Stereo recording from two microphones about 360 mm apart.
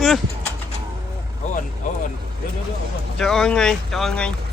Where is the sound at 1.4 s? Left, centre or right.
Centre.